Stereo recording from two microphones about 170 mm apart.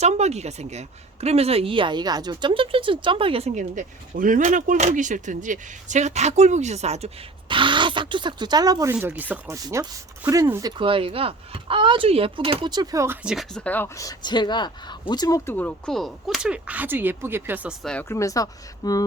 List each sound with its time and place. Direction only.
0.0 s speech: 40° right (ahead or behind); by 13.1 s 20° right (ahead or behind)
13.2 s speech: centre (ahead or behind)
18.1 s speech: 20° left (ahead or behind)